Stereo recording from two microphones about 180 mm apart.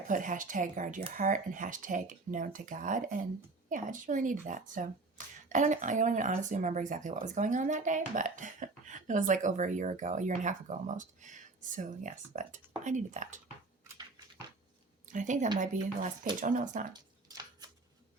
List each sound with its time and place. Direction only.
0.1 s speech: 45° right (ahead or behind)
15.0 s a woman's voice: 45° right (ahead or behind)
16.9 s a sound: 20° right (ahead or behind)